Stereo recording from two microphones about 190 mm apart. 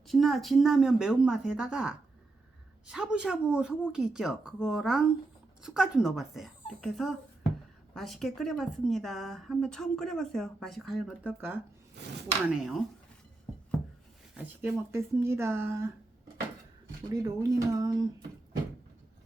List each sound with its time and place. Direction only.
0.1 s a woman's voice: centre (ahead or behind)
14.3 s speech: 10° right (ahead or behind)
17.1 s speech: 20° right (ahead or behind)